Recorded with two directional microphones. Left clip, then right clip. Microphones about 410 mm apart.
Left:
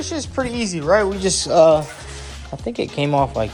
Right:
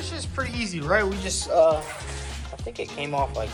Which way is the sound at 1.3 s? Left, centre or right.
Left.